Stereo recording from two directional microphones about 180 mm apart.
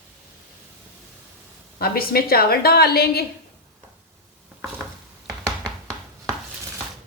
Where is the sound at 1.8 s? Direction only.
55° left (ahead or behind).